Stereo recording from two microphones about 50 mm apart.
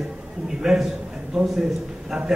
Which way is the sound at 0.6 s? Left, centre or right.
Centre.